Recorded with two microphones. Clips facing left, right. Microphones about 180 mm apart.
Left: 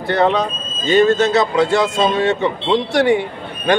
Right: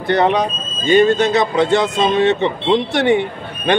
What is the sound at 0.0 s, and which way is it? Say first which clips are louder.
Speech: right 1 dB; 20° right (ahead or behind).